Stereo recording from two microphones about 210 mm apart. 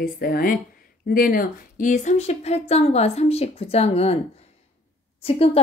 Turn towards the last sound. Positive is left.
turn(degrees=30)  # may be behind; listen again after turning